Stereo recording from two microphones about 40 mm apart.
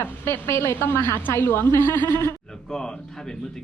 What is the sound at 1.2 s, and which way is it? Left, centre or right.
Speech, left.